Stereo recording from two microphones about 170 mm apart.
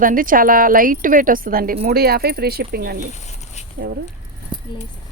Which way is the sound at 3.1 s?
40° left (ahead or behind).